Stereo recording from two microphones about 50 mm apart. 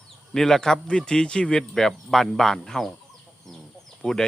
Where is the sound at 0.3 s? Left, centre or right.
Centre.